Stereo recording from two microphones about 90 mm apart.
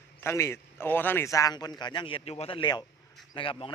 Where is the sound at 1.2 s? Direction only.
35° left (ahead or behind).